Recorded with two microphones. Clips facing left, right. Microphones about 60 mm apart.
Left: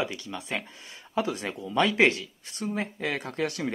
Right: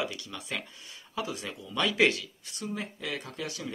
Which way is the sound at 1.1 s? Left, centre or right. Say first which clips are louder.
Left 6 dB; left.